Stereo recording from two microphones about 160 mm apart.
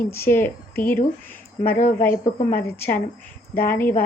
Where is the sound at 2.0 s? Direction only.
15° left (ahead or behind).